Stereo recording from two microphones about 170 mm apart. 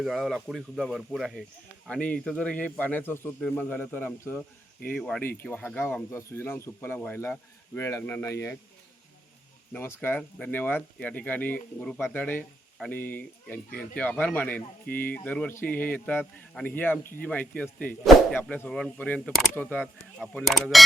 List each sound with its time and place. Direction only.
0.0 s speech: centre (ahead or behind); by 8.5 s 15° left (ahead or behind)
9.7 s speech: 15° left (ahead or behind)